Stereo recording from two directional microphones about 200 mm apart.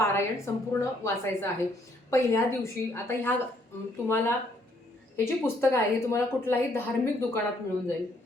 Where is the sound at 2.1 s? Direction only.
15° left (ahead or behind).